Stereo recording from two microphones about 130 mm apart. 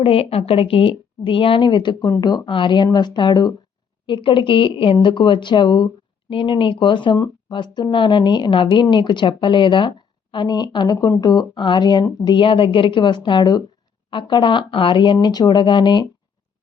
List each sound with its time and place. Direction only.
0.0 s a woman's voice: 45° left (ahead or behind)